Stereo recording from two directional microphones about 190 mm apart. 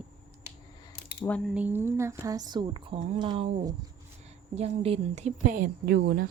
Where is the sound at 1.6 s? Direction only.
10° right (ahead or behind).